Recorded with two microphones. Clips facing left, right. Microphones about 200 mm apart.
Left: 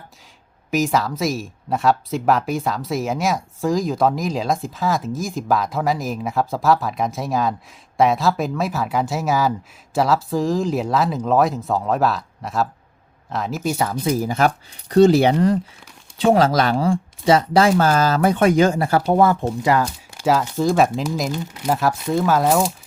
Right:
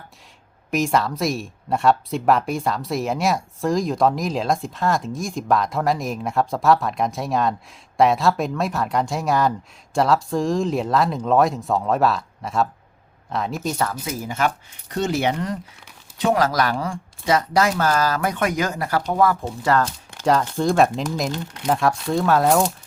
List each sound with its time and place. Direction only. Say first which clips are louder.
0.7 s speech: left 1 dB; centre (ahead or behind)
14.0 s speech: left 5 dB; 35° left (ahead or behind)
19.7 s speech: left 1 dB; 10° left (ahead or behind)